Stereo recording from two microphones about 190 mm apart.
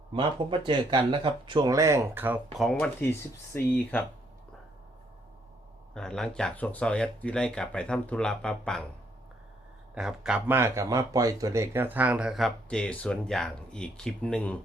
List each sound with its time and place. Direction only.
0.1 s speech: 25° right (ahead or behind); by 2.4 s 10° right (ahead or behind)
2.7 s speech: 10° left (ahead or behind)
5.9 s speech: 5° left (ahead or behind)
9.9 s speech: 5° right (ahead or behind)